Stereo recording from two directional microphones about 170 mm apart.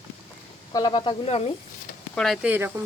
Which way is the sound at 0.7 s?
25° left (ahead or behind).